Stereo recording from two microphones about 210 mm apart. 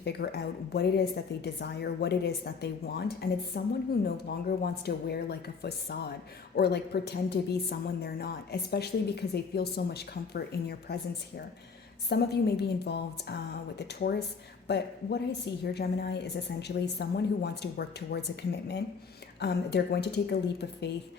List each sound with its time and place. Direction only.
0.0 s a woman's voice: 50° left (ahead or behind)
12.0 s a woman's voice: 50° left (ahead or behind)
19.4 s a woman's voice: 50° left (ahead or behind)